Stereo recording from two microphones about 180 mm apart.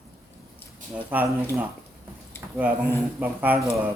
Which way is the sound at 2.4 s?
10° right (ahead or behind).